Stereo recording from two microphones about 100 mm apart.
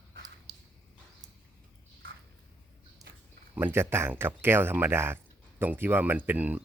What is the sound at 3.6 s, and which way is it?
Speech, 25° right (ahead or behind).